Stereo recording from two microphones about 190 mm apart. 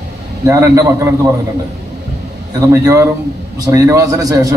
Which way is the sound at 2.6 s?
15° right (ahead or behind).